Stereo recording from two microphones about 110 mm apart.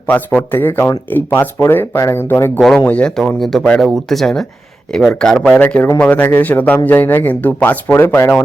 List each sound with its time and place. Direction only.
0.1 s speech: 15° left (ahead or behind)
2.7 s a man's voice: 10° left (ahead or behind)